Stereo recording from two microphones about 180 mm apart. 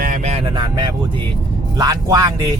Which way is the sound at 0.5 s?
25° right (ahead or behind).